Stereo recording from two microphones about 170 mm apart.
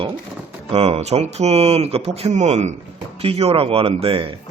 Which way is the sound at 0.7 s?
35° right (ahead or behind).